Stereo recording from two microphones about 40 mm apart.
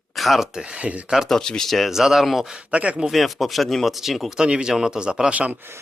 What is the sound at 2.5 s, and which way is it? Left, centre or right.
Speech, right.